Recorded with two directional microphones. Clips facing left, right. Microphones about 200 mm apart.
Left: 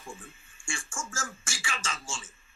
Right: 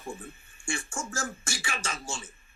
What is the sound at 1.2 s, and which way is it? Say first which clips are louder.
Speech: right 4 dB; 35° right (ahead or behind).